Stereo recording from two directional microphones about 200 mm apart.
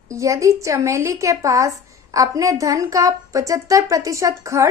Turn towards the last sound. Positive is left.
turn(degrees=-15)  # may be behind; listen again after turning